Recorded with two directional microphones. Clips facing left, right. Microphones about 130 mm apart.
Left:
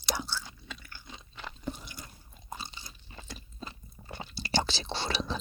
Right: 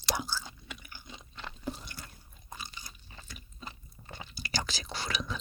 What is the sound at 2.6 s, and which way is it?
Crunch, 25° left (ahead or behind).